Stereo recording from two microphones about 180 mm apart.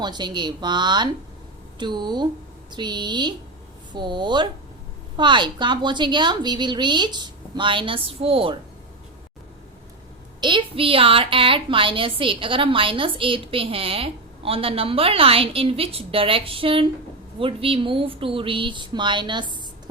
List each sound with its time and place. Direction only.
0.0 s a woman's voice: 25° right (ahead or behind)
10.4 s a woman's voice: 30° right (ahead or behind)